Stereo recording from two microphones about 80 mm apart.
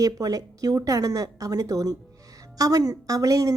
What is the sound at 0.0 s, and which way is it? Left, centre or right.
A woman's voice, right.